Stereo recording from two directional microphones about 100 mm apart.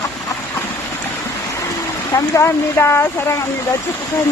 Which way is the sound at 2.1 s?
30° left (ahead or behind).